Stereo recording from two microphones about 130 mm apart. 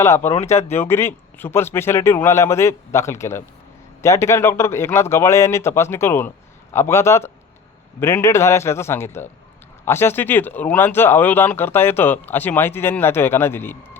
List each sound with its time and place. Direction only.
0.0 s speech: 20° left (ahead or behind)
0.3 s speech: 55° left (ahead or behind)
0.8 s speech: 20° left (ahead or behind)